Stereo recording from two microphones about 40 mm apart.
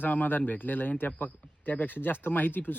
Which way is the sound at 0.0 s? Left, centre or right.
Left.